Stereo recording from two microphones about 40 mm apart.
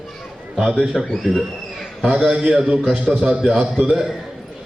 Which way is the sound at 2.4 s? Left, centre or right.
Centre.